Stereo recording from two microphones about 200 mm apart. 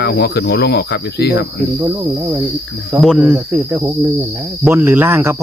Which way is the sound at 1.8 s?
15° right (ahead or behind).